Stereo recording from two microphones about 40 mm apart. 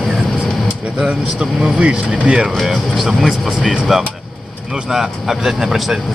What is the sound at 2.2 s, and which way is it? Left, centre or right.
Speech, right.